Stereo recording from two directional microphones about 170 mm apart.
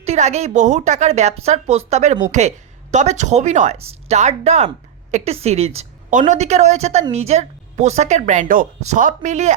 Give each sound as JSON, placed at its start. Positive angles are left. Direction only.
{"t": 0.0, "sound": "a woman's voice", "side_deg": -40}